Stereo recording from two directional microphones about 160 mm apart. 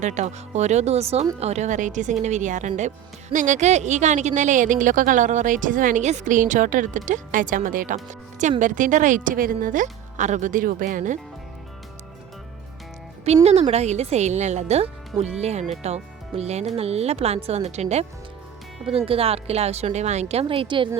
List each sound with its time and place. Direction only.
0.0 s a woman's voice: 50° right (ahead or behind)
13.2 s a woman's voice: 40° right (ahead or behind)